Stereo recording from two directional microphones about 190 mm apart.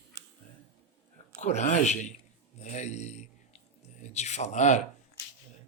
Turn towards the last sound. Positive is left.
turn(degrees=40)  # may be behind; listen again after turning